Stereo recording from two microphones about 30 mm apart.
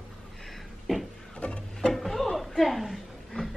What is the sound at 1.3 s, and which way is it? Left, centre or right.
Music, left.